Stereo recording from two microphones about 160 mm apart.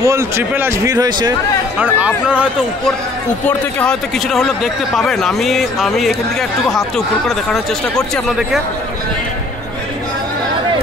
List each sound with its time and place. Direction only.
0.0 s speech: 20° right (ahead or behind)
1.8 s speech: 10° right (ahead or behind)
3.4 s speech: 5° left (ahead or behind)
7.2 s speech: centre (ahead or behind)